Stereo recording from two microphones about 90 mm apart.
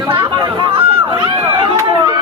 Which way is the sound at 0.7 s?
90° right.